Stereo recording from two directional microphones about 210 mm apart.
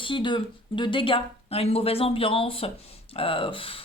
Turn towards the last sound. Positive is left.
turn(degrees=25)  # may be behind; listen again after turning